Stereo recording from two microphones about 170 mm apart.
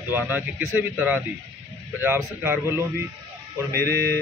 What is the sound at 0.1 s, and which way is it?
Speech, 10° right (ahead or behind).